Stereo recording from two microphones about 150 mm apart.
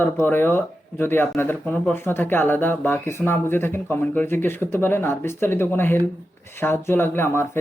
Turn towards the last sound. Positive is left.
turn(degrees=15)  # may be behind; listen again after turning